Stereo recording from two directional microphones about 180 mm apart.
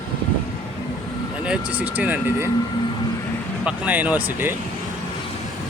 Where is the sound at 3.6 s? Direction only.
10° right (ahead or behind).